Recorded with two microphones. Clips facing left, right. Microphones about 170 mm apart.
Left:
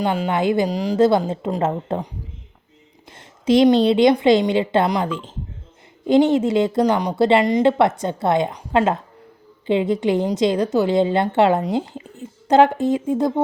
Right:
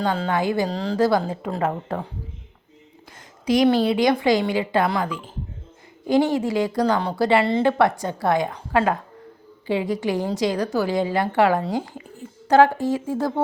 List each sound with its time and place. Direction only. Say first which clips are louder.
0.0 s a woman's voice: left 3 dB; 15° left (ahead or behind)
3.1 s a woman's voice: left 4 dB; 25° left (ahead or behind)